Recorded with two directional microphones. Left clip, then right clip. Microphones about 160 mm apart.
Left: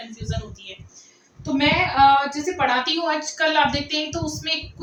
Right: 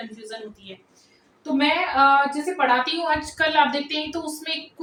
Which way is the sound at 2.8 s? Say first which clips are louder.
Left 1 dB; 5° right (ahead or behind).